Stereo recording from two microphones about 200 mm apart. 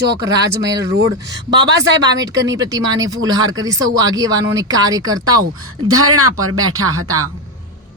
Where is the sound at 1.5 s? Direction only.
60° right (ahead or behind).